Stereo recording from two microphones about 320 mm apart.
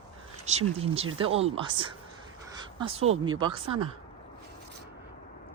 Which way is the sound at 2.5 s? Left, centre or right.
Centre.